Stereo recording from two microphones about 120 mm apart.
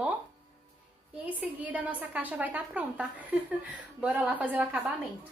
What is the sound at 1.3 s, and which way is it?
A woman's voice, 15° right (ahead or behind).